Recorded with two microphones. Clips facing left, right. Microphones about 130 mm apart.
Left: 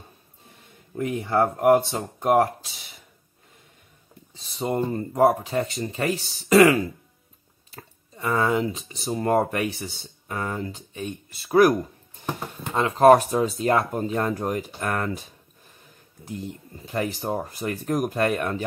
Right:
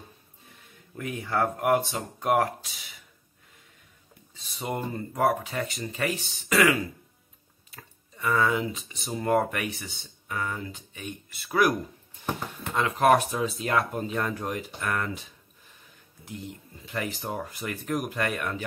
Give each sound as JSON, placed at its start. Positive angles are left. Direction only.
{"t": 0.9, "sound": "speech", "side_deg": 25}
{"t": 4.4, "sound": "speech", "side_deg": 30}
{"t": 12.7, "sound": "speech", "side_deg": 30}
{"t": 16.8, "sound": "speech", "side_deg": 35}